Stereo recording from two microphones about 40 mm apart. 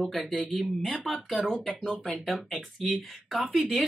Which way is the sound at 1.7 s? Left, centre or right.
Centre.